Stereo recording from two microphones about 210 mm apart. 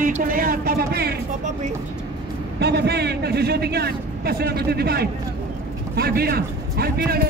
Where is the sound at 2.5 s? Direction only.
50° right (ahead or behind).